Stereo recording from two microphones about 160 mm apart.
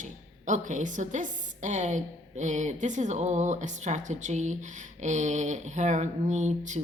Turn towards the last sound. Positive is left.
turn(degrees=-50)  # may be behind; listen again after turning